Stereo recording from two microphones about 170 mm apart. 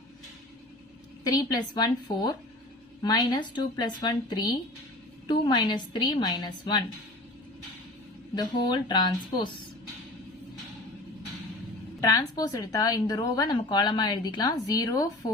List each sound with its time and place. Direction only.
1.2 s a woman's voice: 20° left (ahead or behind)
8.4 s a woman's voice: 25° left (ahead or behind)
11.9 s a woman's voice: 20° left (ahead or behind)